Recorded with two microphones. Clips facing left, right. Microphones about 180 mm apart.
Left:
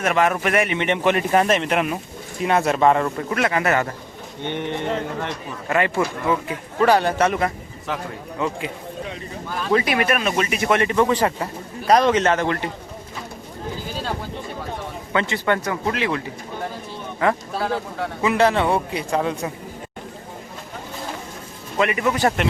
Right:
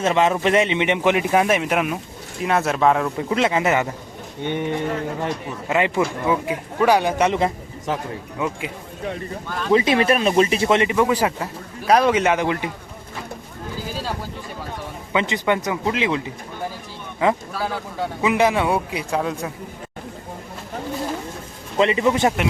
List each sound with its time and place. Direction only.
0.0 s speech: 20° right (ahead or behind); by 3.1 s centre (ahead or behind)
3.2 s speech: 20° right (ahead or behind)
9.5 s speech: 5° left (ahead or behind)
9.7 s speech: 25° right (ahead or behind)
10.9 s speech: 10° right (ahead or behind)
15.1 s speech: 15° right (ahead or behind); by 19.5 s centre (ahead or behind)
21.8 s speech: 25° right (ahead or behind)